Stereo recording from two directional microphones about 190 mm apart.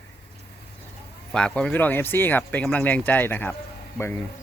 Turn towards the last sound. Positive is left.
turn(degrees=10)  # may be behind; listen again after turning